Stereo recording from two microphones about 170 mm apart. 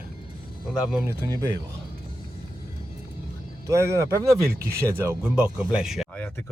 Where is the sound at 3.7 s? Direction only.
15° right (ahead or behind).